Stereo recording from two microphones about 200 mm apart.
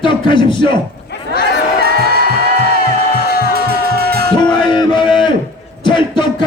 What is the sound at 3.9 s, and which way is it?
Music, 50° right (ahead or behind).